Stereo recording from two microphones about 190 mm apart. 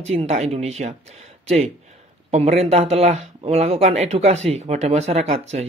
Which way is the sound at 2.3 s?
35° right (ahead or behind).